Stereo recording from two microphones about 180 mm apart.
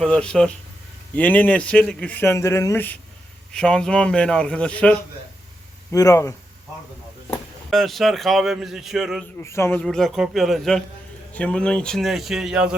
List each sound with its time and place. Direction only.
0.0 s a man's voice: 5° left (ahead or behind)
5.9 s a man's voice: 20° left (ahead or behind)
7.3 s speech: centre (ahead or behind)
9.4 s a man's voice: 15° left (ahead or behind); by 12.7 s 5° right (ahead or behind)